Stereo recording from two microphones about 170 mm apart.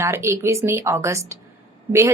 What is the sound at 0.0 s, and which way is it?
A woman's voice, 15° right (ahead or behind).